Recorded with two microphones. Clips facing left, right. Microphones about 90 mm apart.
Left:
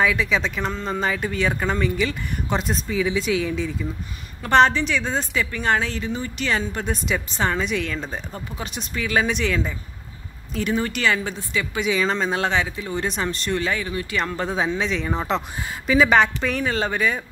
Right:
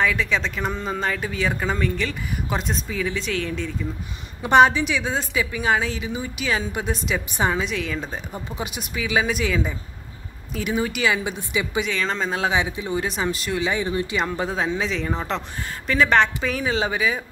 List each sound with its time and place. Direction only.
0.0 s speech: 5° left (ahead or behind)
4.4 s a woman's voice: 10° right (ahead or behind)
7.6 s a woman's voice: centre (ahead or behind)
11.8 s speech: 5° left (ahead or behind)
12.5 s a woman's voice: 15° right (ahead or behind)
13.0 s speech: 5° right (ahead or behind)
13.7 s speech: 25° right (ahead or behind)
14.1 s a woman's voice: 10° right (ahead or behind)
14.8 s speech: centre (ahead or behind)